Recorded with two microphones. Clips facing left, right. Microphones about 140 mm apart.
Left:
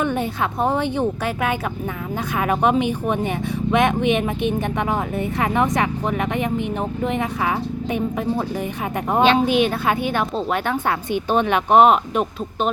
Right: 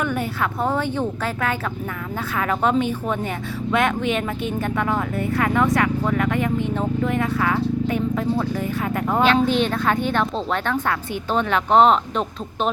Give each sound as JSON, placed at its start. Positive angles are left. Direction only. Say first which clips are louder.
{"t": 0.0, "sound": "a woman's voice", "louder": "left 2 dB", "side_deg": 25}